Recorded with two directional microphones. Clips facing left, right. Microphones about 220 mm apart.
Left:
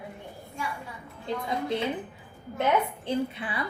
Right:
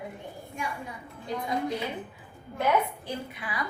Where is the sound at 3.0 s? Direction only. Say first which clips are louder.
Left 7 dB; 25° left (ahead or behind).